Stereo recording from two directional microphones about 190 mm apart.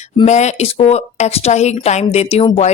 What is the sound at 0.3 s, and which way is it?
Speech, 35° left (ahead or behind).